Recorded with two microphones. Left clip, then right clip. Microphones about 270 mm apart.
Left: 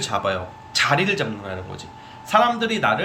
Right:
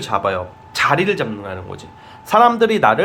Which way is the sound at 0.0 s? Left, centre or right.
Centre.